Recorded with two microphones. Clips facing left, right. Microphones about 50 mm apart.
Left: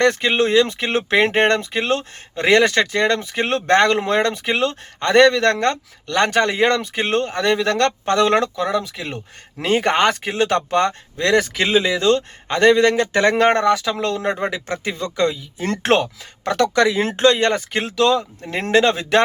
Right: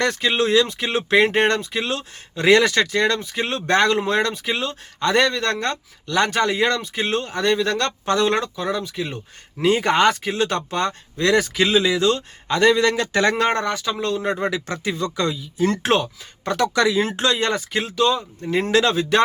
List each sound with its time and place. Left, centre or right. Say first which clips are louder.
0.0 s speech: left 3 dB; left
8.4 s speech: left 4 dB; left
9.1 s speech: left 2 dB; left
13.4 s speech: left 5 dB; left
14.4 s speech: left 1 dB; left
15.7 s speech: left 2 dB; left
16.7 s speech: left 2 dB; left
17.9 s speech: left 3 dB; left
18.5 s speech: left 2 dB; left